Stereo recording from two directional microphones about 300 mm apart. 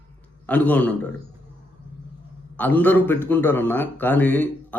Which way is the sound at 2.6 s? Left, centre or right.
Centre.